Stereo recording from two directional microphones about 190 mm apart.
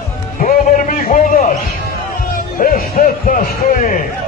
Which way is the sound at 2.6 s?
50° left (ahead or behind).